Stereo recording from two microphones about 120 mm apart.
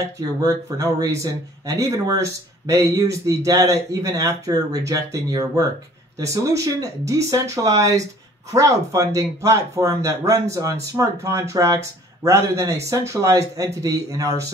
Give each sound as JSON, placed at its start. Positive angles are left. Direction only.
{"t": 0.2, "sound": "speech", "side_deg": -30}